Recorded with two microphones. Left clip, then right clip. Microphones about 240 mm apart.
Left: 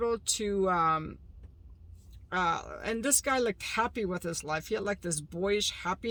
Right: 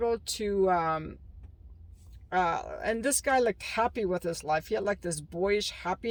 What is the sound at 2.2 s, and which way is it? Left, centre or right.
Speech, centre.